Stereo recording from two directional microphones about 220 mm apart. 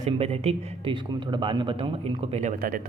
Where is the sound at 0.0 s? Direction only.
25° right (ahead or behind).